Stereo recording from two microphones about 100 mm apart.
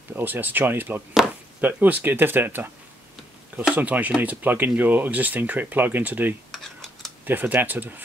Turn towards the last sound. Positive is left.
turn(degrees=-20)  # may be behind; listen again after turning